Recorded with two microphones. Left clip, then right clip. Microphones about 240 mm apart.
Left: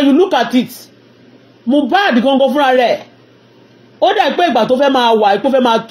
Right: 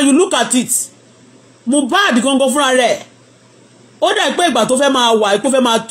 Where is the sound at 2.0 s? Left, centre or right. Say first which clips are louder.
Left 2 dB; centre.